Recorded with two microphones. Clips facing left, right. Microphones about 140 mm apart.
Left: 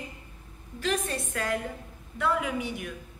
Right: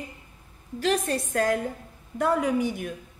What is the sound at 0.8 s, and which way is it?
A woman's voice, 35° right (ahead or behind).